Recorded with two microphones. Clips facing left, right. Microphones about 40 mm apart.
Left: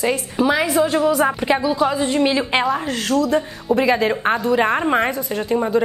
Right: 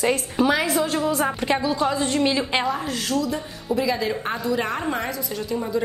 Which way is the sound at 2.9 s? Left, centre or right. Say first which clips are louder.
Left 6 dB; left.